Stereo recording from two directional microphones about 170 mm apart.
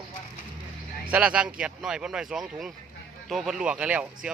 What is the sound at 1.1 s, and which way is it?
Speech, 5° right (ahead or behind).